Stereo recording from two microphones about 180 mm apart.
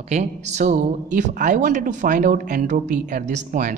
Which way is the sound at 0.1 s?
40° right (ahead or behind).